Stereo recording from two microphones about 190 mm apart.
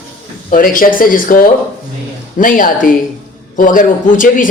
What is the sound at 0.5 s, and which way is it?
Speech, 45° left (ahead or behind).